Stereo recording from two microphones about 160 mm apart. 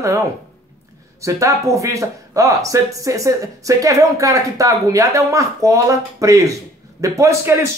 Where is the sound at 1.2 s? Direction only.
20° right (ahead or behind).